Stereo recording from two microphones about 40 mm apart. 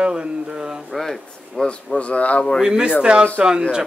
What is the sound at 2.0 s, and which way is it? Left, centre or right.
Speech, left.